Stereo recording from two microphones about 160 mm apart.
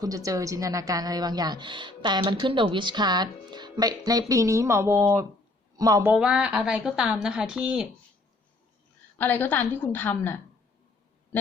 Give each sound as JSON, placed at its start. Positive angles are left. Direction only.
{"t": 0.0, "sound": "a woman's voice", "side_deg": -20}
{"t": 6.1, "sound": "a woman's voice", "side_deg": -5}
{"t": 9.1, "sound": "a woman's voice", "side_deg": 10}